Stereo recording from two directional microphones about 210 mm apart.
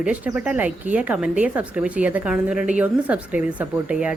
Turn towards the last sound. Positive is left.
turn(degrees=-5)  # may be behind; listen again after turning